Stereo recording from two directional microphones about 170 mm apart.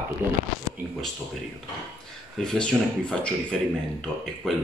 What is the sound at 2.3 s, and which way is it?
Speech, 5° left (ahead or behind).